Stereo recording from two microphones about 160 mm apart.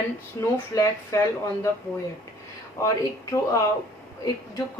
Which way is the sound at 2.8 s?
20° left (ahead or behind).